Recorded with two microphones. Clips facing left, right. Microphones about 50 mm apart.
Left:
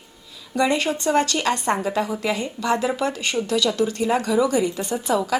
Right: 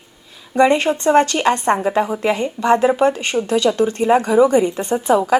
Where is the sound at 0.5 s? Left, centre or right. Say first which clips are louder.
Right 7 dB; right.